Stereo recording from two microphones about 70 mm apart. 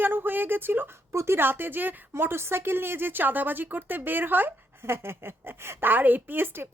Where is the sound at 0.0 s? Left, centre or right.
Right.